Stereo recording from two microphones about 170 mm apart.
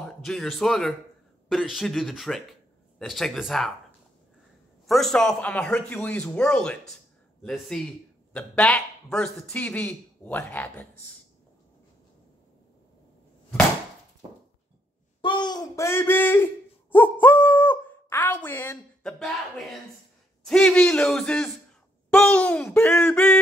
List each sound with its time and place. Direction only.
0.0 s speech: 5° left (ahead or behind)
4.8 s a man's voice: centre (ahead or behind)
15.2 s a man's voice: 25° left (ahead or behind)
19.0 s speech: centre (ahead or behind)
20.4 s a man's voice: 5° left (ahead or behind)